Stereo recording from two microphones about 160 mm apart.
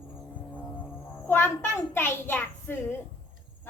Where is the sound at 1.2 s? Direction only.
15° left (ahead or behind).